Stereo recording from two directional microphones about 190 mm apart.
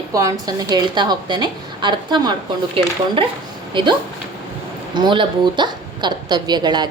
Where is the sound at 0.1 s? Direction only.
15° right (ahead or behind).